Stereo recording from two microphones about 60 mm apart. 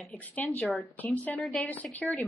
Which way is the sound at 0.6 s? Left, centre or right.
Centre.